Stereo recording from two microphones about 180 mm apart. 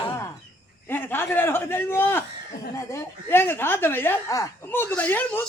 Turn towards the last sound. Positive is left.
turn(degrees=10)  # may be behind; listen again after turning